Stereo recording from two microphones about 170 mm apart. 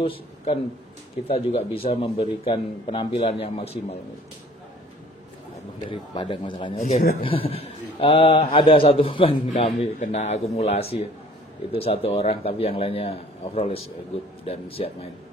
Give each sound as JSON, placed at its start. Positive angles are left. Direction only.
{"t": 0.0, "sound": "speech", "side_deg": 30}
{"t": 5.9, "sound": "a man's voice", "side_deg": 30}
{"t": 9.7, "sound": "speech", "side_deg": 45}